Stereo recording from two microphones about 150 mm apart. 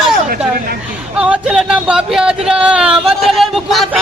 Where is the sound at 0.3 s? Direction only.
80° right.